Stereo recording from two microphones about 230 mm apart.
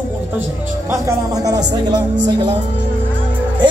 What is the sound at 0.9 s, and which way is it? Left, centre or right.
Speech, centre.